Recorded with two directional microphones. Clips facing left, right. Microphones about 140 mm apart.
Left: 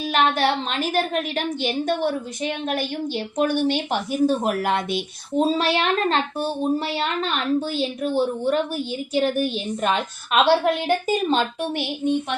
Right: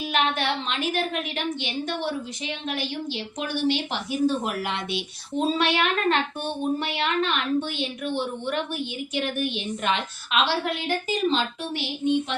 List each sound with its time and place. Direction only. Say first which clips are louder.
0.0 s a woman's voice: left 5 dB; 40° left (ahead or behind)